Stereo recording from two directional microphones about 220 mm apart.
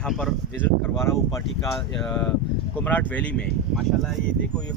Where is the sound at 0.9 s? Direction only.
10° left (ahead or behind).